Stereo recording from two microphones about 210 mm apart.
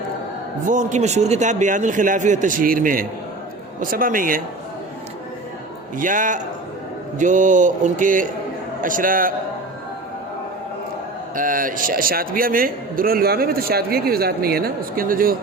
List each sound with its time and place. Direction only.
0.7 s a man's voice: 35° right (ahead or behind)
6.0 s a man's voice: 40° right (ahead or behind)
11.3 s a man's voice: 40° right (ahead or behind)